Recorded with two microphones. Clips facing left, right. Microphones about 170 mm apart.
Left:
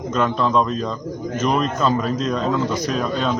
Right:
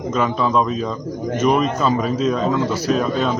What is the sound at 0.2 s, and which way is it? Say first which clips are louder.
A man's voice: even; 5° right (ahead or behind).